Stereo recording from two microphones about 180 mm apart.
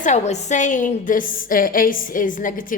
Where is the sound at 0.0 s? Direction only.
40° left (ahead or behind).